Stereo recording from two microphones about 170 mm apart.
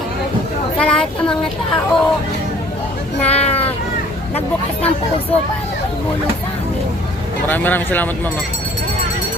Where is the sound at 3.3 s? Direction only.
40° left (ahead or behind).